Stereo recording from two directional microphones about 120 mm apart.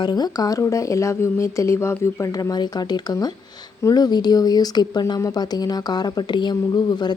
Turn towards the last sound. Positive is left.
turn(degrees=35)  # may be behind; listen again after turning